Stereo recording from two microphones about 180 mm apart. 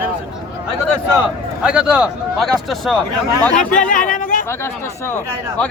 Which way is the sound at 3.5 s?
45° left (ahead or behind).